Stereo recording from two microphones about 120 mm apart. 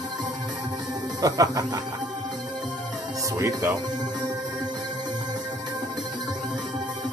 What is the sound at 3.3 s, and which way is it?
Speech, 25° right (ahead or behind).